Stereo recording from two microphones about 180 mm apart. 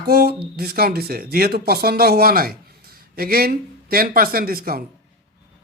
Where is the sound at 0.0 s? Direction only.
55° right (ahead or behind).